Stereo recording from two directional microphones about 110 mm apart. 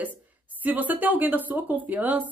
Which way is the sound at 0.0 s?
15° right (ahead or behind).